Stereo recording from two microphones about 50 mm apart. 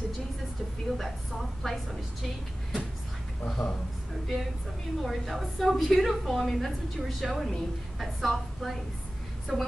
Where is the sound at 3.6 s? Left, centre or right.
Left.